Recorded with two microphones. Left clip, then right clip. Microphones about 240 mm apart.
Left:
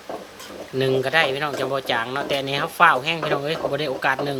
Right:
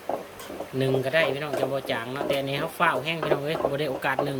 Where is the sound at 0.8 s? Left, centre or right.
Centre.